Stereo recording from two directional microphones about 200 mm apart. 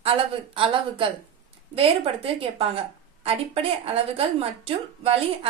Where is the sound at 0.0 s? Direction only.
30° right (ahead or behind).